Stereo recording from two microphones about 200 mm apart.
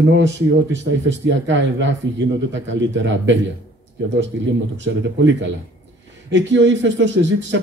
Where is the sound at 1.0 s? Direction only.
65° right (ahead or behind).